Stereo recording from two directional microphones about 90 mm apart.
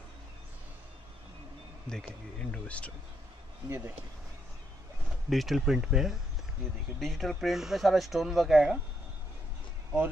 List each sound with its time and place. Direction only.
1.9 s speech: 10° left (ahead or behind)
3.6 s speech: 25° right (ahead or behind)
5.3 s speech: centre (ahead or behind)